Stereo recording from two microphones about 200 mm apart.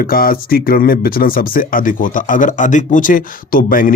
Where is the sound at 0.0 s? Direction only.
45° left (ahead or behind).